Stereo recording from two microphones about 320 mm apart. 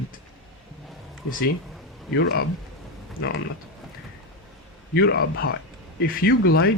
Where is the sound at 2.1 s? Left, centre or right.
Left.